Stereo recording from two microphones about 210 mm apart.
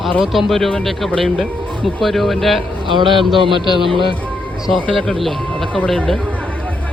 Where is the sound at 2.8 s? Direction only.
25° right (ahead or behind).